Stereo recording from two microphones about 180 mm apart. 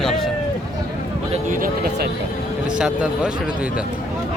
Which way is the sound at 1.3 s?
50° right (ahead or behind).